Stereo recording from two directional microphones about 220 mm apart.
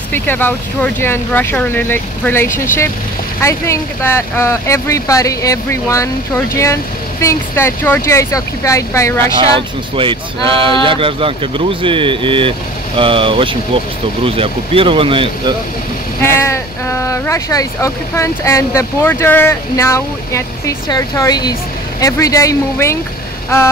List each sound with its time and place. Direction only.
0.1 s speech: 10° left (ahead or behind)
9.9 s speech: 25° right (ahead or behind)
16.2 s speech: 10° left (ahead or behind)